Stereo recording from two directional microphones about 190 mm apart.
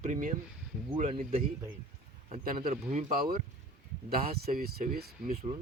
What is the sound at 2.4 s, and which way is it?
Speech, 50° right (ahead or behind).